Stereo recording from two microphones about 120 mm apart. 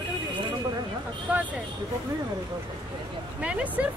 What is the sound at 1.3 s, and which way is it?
Speech, 15° right (ahead or behind).